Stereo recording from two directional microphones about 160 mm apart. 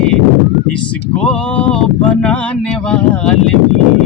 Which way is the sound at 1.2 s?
5° left (ahead or behind).